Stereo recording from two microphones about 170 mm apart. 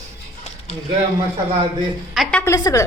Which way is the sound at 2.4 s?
20° left (ahead or behind).